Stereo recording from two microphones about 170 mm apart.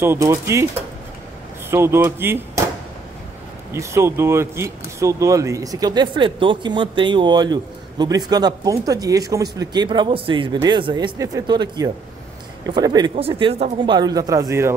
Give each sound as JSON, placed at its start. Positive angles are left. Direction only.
{"t": 0.0, "sound": "speech", "side_deg": -15}
{"t": 1.7, "sound": "speech", "side_deg": -15}
{"t": 3.7, "sound": "speech", "side_deg": -15}